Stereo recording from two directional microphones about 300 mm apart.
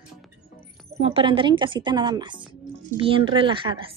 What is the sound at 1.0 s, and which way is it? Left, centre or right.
Speech, centre.